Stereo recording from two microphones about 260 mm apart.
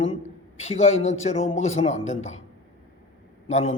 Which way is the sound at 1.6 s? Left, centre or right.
Left.